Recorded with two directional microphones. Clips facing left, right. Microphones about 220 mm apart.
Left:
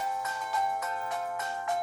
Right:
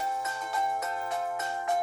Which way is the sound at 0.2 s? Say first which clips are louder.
Right 1 dB; 25° right (ahead or behind).